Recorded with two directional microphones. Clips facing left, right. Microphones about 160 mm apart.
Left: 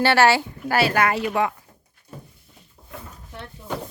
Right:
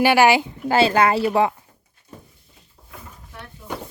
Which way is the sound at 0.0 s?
15° right (ahead or behind).